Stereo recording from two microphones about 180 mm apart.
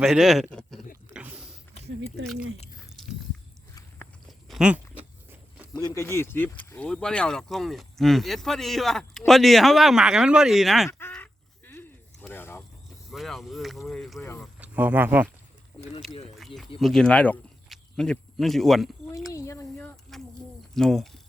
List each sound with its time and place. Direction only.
0.0 s speech: 5° right (ahead or behind)
1.1 s a sound: 5° right (ahead or behind)
4.3 s a sound: centre (ahead or behind)
5.7 s speech: 20° left (ahead or behind); by 10.8 s centre (ahead or behind)
11.1 s crow: 10° left (ahead or behind)
13.1 s speech: centre (ahead or behind)
14.2 s speech: 15° left (ahead or behind)
14.6 s speech: 10° right (ahead or behind)
16.8 s speech: 5° left (ahead or behind)
19.3 s a sound: 15° left (ahead or behind)
20.1 s a sound: centre (ahead or behind)
20.7 s speech: centre (ahead or behind)